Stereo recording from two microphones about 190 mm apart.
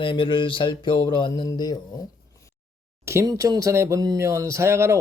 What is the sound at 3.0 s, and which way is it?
Speech, 15° right (ahead or behind).